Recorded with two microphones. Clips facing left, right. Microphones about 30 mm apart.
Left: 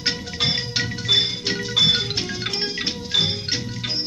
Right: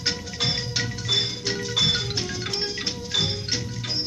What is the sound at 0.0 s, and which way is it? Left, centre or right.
Music, left.